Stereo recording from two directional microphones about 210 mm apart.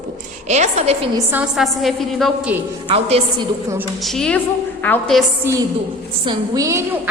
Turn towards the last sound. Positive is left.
turn(degrees=-15)  # may be behind; listen again after turning